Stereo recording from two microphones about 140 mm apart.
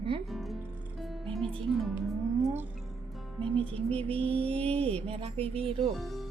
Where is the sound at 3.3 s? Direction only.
40° right (ahead or behind).